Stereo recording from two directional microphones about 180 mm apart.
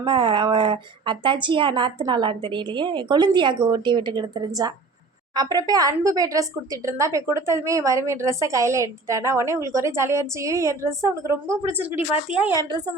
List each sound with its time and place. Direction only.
0.0 s a woman's voice: 25° right (ahead or behind); by 12.5 s 5° right (ahead or behind)